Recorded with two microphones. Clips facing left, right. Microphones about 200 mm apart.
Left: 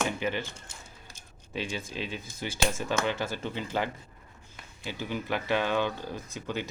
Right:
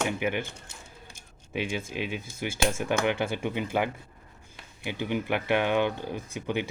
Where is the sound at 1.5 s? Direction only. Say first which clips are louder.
Right 3 dB; 15° right (ahead or behind).